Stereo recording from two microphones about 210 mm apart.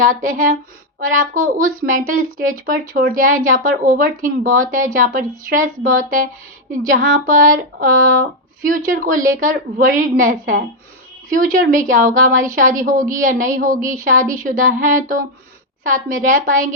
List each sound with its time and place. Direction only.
0.9 s speech: 40° right (ahead or behind)